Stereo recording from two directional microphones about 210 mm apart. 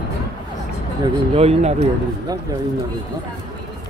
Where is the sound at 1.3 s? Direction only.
30° right (ahead or behind).